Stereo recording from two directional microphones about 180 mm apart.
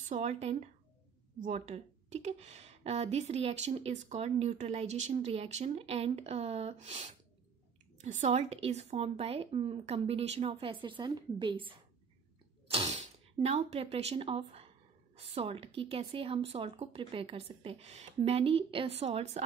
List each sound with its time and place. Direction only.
0.1 s speech: 40° right (ahead or behind)